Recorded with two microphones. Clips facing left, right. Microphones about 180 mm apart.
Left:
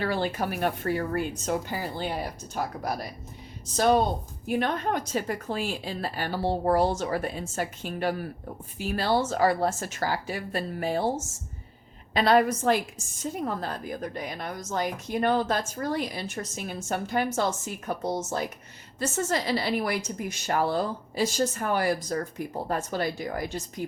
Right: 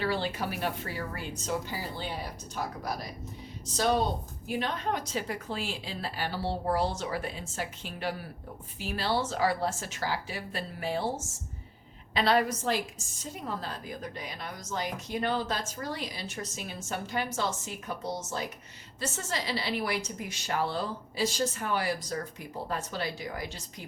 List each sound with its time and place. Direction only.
0.0 s a woman's voice: 50° left (ahead or behind)
12.1 s a woman's voice: 50° left (ahead or behind)